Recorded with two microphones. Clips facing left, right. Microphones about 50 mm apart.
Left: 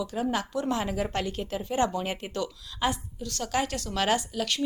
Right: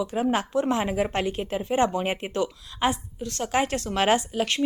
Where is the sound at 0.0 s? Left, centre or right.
Right.